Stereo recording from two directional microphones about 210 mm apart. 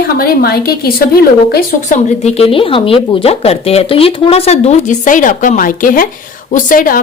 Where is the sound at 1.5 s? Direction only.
35° left (ahead or behind).